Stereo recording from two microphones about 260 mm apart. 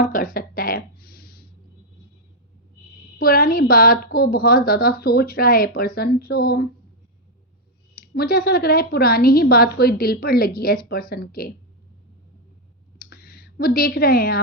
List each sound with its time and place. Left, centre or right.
0.0 s a sound: left
3.2 s a woman's voice: left
8.0 s a woman's voice: left
13.1 s clicking: left